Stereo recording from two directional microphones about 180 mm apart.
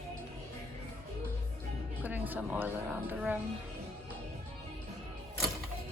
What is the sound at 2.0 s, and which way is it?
Speech, 10° right (ahead or behind).